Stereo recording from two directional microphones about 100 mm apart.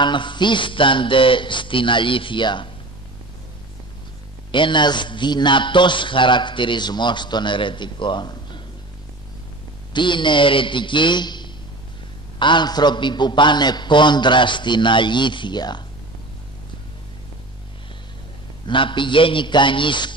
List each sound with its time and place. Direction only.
0.0 s speech: 50° left (ahead or behind)
4.5 s a man's voice: 55° left (ahead or behind)
9.9 s a man's voice: 50° left (ahead or behind)
18.7 s speech: 55° left (ahead or behind)